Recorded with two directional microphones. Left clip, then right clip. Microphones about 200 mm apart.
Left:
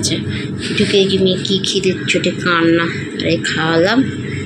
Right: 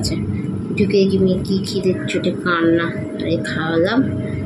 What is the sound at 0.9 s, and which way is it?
Speech, 25° right (ahead or behind).